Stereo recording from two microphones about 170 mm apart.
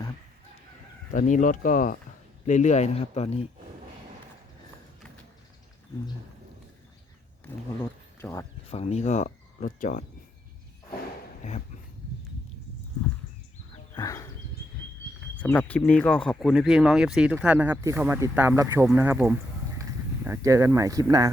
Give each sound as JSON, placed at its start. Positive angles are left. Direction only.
{"t": 1.1, "sound": "speech", "side_deg": 50}
{"t": 8.2, "sound": "speech", "side_deg": 15}
{"t": 8.7, "sound": "speech", "side_deg": 40}
{"t": 13.9, "sound": "a sound", "side_deg": 20}
{"t": 15.4, "sound": "speech", "side_deg": 10}